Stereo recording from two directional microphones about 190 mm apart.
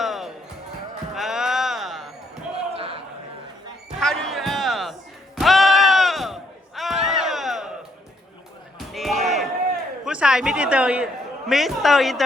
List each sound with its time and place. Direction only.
0.0 s basketball bounce: centre (ahead or behind)
2.7 s a sound: 30° right (ahead or behind)
4.0 s music: centre (ahead or behind)
5.4 s sheep: centre (ahead or behind)
8.9 s a sound: centre (ahead or behind)
10.0 s a man's voice: 5° right (ahead or behind)